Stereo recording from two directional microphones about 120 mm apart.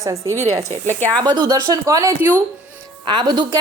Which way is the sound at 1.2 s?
35° right (ahead or behind).